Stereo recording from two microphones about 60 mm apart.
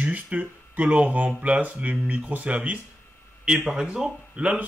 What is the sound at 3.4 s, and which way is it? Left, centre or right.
Speech, centre.